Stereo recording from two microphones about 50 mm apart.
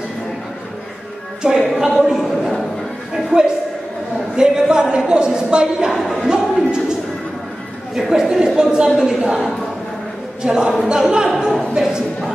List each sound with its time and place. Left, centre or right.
1.4 s a woman's voice: centre
4.4 s a woman's voice: centre
5.9 s speech: centre
6.2 s speech: centre
8.1 s a woman's voice: centre